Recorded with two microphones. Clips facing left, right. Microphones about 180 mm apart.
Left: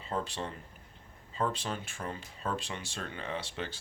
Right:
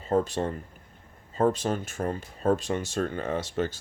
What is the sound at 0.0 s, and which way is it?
Speech, 45° right (ahead or behind).